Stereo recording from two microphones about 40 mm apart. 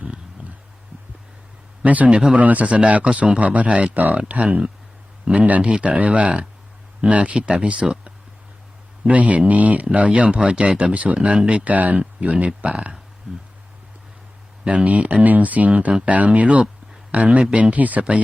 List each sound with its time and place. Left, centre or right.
1.8 s speech: right
2.1 s speech: right
2.4 s speech: right
3.9 s speech: right
4.3 s speech: right
5.7 s speech: right
9.0 s speech: right
11.7 s speech: right
14.8 s speech: right